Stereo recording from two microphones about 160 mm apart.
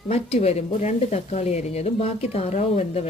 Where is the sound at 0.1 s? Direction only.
40° left (ahead or behind).